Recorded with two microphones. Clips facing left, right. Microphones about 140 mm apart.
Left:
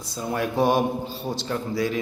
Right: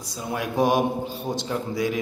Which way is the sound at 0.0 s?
10° right (ahead or behind).